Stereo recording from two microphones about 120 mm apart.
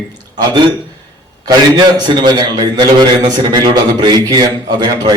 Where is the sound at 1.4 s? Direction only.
35° right (ahead or behind).